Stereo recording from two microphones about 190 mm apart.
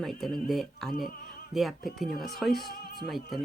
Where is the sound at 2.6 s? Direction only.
55° left (ahead or behind).